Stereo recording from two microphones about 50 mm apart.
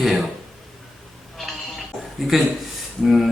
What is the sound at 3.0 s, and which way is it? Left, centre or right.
Speech, centre.